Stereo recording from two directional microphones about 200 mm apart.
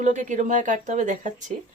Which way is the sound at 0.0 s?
40° right (ahead or behind).